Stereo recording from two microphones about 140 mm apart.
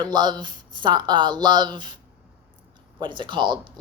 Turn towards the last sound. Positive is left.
turn(degrees=-35)  # may be behind; listen again after turning